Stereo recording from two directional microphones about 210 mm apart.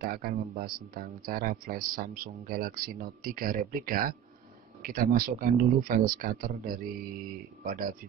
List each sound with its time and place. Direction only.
0.0 s speech: 45° right (ahead or behind)